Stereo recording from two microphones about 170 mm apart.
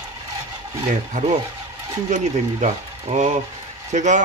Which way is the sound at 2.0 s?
45° right (ahead or behind).